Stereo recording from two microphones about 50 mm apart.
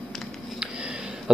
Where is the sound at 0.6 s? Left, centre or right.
Centre.